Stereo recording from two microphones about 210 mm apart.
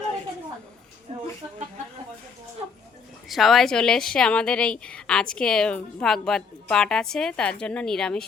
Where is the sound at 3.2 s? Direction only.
Centre (ahead or behind).